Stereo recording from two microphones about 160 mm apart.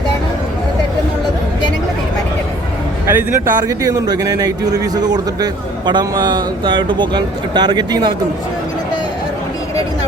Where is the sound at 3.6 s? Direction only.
25° right (ahead or behind).